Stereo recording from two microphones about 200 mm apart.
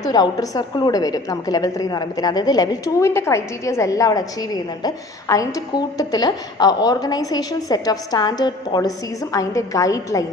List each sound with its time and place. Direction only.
0.1 s a woman's voice: 20° left (ahead or behind)